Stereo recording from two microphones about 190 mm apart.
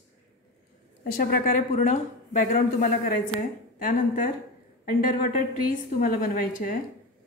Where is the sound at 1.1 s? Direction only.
50° left (ahead or behind).